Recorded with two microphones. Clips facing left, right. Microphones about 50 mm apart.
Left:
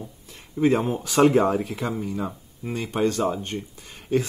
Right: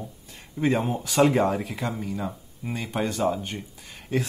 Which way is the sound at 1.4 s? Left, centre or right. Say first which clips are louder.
Left 2 dB; centre.